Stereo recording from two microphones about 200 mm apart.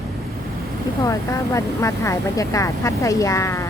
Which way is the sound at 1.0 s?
15° left (ahead or behind).